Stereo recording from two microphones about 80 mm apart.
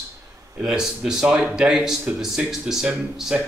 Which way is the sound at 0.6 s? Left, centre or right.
Centre.